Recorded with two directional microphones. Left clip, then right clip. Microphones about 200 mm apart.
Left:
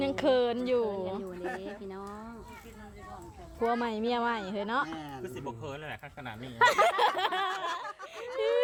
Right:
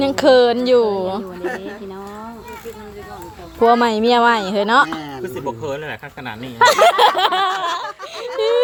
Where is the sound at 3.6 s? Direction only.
20° right (ahead or behind).